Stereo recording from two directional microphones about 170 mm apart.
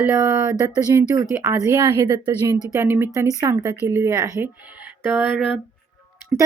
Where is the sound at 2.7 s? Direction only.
15° right (ahead or behind).